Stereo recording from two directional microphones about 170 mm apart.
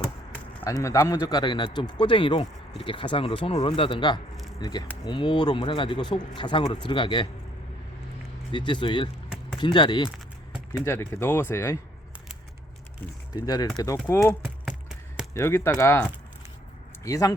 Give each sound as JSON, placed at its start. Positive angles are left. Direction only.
{"t": 0.6, "sound": "speech", "side_deg": 20}
{"t": 8.5, "sound": "speech", "side_deg": 30}
{"t": 10.8, "sound": "speech", "side_deg": 15}
{"t": 13.4, "sound": "speech", "side_deg": 20}
{"t": 14.4, "sound": "a sound", "side_deg": -5}
{"t": 15.4, "sound": "speech", "side_deg": 15}